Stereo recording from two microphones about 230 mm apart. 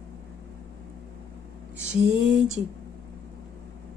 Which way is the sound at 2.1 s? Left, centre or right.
Right.